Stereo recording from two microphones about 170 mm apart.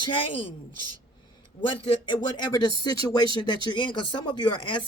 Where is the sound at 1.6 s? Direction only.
30° left (ahead or behind).